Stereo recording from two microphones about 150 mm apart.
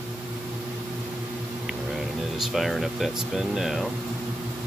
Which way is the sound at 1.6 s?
Centre (ahead or behind).